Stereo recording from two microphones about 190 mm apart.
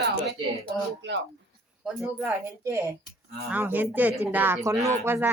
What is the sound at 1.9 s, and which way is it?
Speech, 5° right (ahead or behind).